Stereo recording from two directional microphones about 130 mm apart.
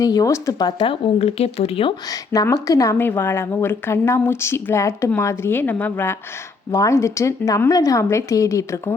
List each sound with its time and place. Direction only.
0.0 s speech: 25° left (ahead or behind)
0.8 s speech: 45° left (ahead or behind)
2.0 s speech: 25° left (ahead or behind)